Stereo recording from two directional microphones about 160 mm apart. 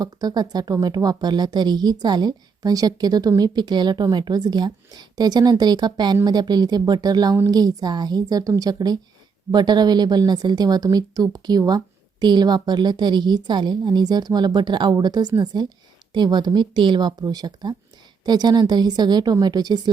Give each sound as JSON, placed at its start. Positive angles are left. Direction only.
{"t": 0.0, "sound": "speech", "side_deg": -25}